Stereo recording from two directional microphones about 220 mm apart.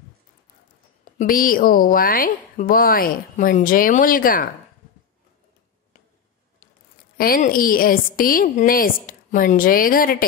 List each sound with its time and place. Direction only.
1.1 s speech: 40° left (ahead or behind)
7.2 s speech: 40° left (ahead or behind)